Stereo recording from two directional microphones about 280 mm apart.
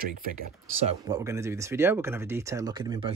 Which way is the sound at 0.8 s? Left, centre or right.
Centre.